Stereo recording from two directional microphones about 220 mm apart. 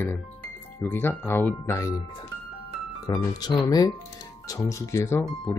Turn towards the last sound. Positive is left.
turn(degrees=10)  # may be behind; listen again after turning